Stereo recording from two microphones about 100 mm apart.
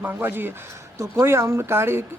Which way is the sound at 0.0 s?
20° right (ahead or behind).